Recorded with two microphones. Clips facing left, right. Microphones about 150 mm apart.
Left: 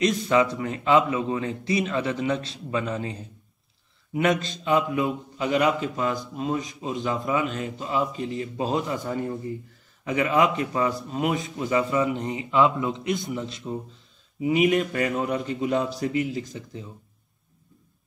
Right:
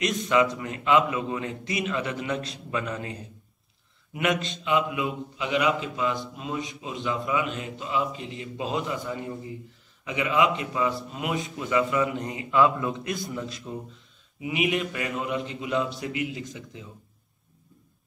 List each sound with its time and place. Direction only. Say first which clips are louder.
0.2 s a man's voice: left 1 dB; 35° left (ahead or behind)
14.4 s a man's voice: left 6 dB; 40° left (ahead or behind)